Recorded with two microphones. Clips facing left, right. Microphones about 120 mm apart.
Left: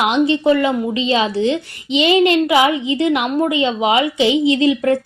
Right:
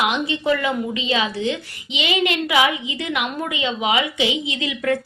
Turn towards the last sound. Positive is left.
turn(degrees=30)  # may be behind; listen again after turning